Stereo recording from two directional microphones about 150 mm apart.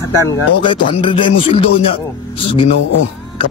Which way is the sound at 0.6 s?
35° left (ahead or behind).